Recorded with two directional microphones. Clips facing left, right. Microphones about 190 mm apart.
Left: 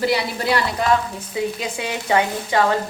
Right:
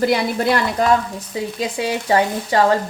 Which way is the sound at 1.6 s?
40° right (ahead or behind).